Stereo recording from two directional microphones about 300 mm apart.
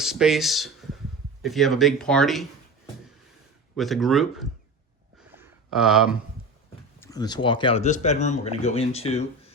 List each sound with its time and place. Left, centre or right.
0.0 s speech: centre
3.8 s speech: centre
5.3 s a sound: centre
7.0 s speech: centre